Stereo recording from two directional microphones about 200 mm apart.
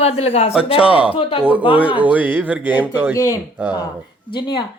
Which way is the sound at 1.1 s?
25° left (ahead or behind).